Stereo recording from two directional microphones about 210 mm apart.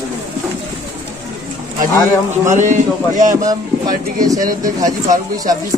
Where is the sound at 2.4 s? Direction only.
35° right (ahead or behind).